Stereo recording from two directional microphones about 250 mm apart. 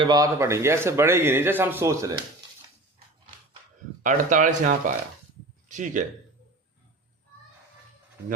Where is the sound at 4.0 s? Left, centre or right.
Right.